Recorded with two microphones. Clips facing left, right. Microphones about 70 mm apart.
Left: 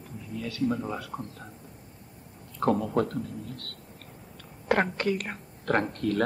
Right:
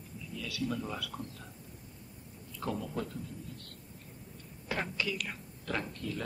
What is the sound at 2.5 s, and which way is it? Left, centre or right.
Speech, left.